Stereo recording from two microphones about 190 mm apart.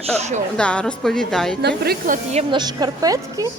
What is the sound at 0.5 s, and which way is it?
A woman's voice, 5° left (ahead or behind).